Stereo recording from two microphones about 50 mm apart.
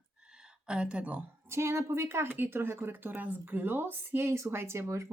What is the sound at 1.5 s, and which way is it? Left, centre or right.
Speech, right.